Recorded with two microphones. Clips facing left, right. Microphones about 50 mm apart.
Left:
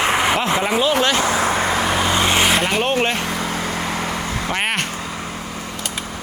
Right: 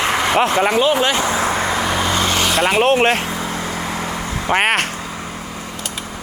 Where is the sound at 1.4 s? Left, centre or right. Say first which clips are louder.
Even; left.